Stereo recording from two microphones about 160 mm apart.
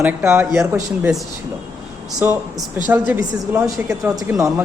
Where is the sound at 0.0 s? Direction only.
15° right (ahead or behind).